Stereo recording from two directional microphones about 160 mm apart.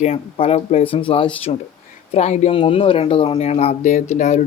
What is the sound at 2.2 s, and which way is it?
Speech, 45° left (ahead or behind).